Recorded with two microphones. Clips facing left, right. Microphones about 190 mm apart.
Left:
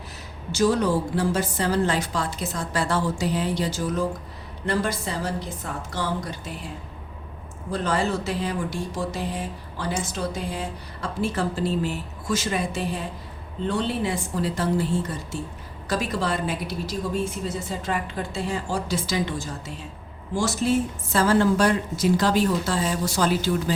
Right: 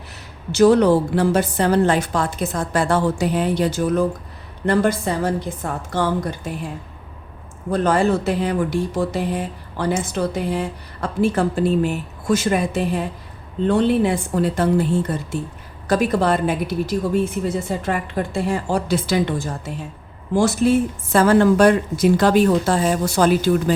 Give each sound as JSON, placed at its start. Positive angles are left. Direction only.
{"t": 0.5, "sound": "a woman's voice", "side_deg": -65}
{"t": 7.7, "sound": "speech", "side_deg": -55}